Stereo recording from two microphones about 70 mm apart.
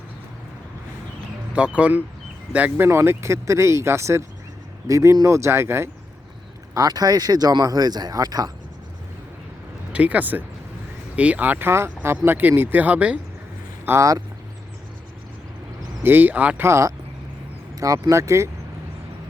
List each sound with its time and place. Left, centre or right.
1.5 s speech: centre
2.7 s speech: right
6.7 s speech: right
9.9 s speech: right
11.7 s speech: right
12.1 s speech: right
13.9 s speech: right
16.0 s speech: right
16.6 s speech: right
17.7 s speech: right